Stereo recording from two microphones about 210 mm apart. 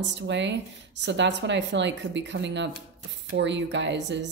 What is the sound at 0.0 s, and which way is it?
A woman's voice, 55° right (ahead or behind).